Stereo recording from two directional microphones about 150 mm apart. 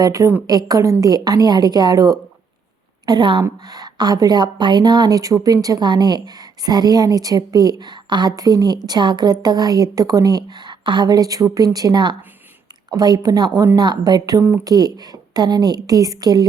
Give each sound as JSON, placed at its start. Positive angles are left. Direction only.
{"t": 0.0, "sound": "a woman's voice", "side_deg": -20}